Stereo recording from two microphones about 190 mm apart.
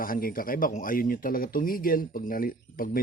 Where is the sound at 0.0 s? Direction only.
50° left (ahead or behind).